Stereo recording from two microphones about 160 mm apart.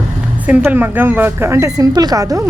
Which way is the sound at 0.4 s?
10° right (ahead or behind).